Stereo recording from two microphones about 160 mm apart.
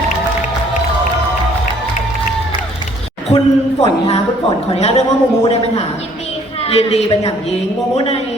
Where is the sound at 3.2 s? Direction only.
40° left (ahead or behind).